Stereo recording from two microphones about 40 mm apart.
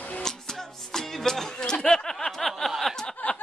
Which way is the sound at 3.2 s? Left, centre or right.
Left.